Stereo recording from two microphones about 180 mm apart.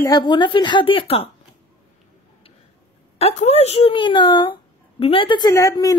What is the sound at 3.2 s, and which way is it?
Speech, 35° left (ahead or behind).